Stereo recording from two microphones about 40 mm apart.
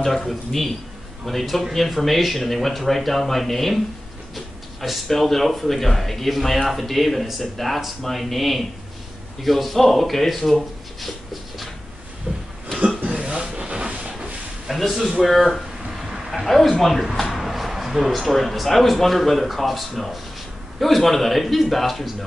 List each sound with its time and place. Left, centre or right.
0.0 s speech: centre
5.0 s speech: centre
12.3 s a sound: right
14.7 s a man's voice: centre